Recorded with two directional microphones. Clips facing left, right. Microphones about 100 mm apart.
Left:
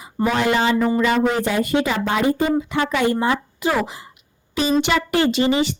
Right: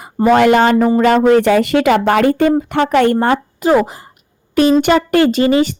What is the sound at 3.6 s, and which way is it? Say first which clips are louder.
Speech: right 8 dB; 40° right (ahead or behind).